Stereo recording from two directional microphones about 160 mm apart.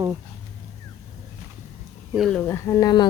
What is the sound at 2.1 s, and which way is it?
Speech, centre (ahead or behind).